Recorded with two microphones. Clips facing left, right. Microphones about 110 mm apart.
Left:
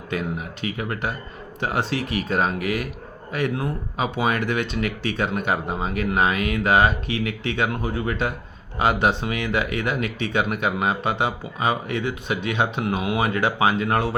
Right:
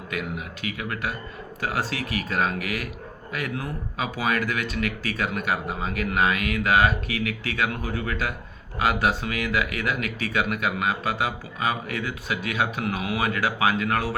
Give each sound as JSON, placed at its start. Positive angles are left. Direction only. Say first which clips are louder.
{"t": 0.1, "sound": "speech", "louder": "left 4 dB", "side_deg": 30}